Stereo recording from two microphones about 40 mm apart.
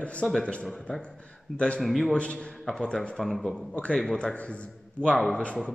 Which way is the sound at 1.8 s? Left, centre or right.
Centre.